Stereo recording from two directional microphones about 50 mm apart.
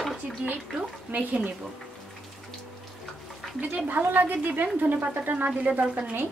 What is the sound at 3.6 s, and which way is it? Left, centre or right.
A woman's voice, right.